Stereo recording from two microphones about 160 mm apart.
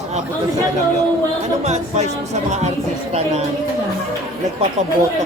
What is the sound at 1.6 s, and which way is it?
Music, 45° right (ahead or behind).